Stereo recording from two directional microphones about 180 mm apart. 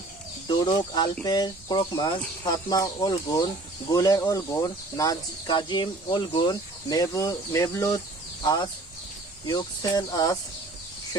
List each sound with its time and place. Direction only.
0.4 s speech: 25° left (ahead or behind)
9.5 s speech: 20° left (ahead or behind)